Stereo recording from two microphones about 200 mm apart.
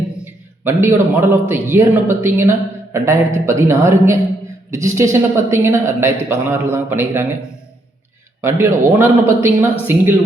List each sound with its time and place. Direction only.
0.6 s a man's voice: 10° right (ahead or behind)
8.4 s a man's voice: 10° right (ahead or behind)